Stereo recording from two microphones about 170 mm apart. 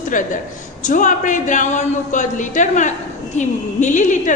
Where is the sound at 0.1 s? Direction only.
50° left (ahead or behind).